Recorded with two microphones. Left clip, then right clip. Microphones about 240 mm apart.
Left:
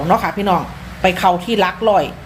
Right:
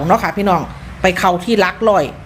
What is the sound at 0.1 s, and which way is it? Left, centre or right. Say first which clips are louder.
A woman's voice: right 1 dB; centre.